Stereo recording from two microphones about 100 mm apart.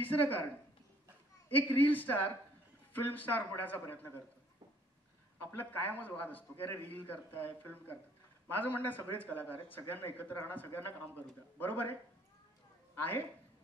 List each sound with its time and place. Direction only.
0.0 s speech: 20° left (ahead or behind)
1.5 s a man's voice: 20° left (ahead or behind)
5.4 s speech: 20° left (ahead or behind)
12.9 s a woman's voice: 20° left (ahead or behind)